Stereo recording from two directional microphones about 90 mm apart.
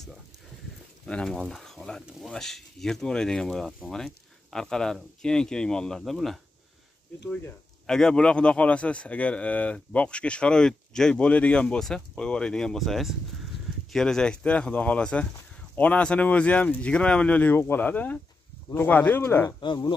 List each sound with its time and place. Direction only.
1.0 s a man's voice: 10° left (ahead or behind)
7.8 s a man's voice: 5° left (ahead or behind); by 19.5 s 25° left (ahead or behind)
19.6 s speech: 60° left (ahead or behind)